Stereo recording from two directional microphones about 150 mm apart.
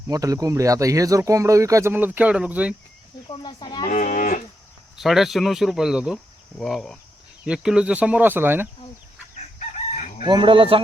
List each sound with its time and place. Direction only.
0.1 s speech: 25° right (ahead or behind)
3.2 s speech: 30° left (ahead or behind)
3.9 s livestock: 55° left (ahead or behind)
4.9 s speech: centre (ahead or behind)
9.6 s chicken: 50° left (ahead or behind)
10.2 s speech: 30° right (ahead or behind)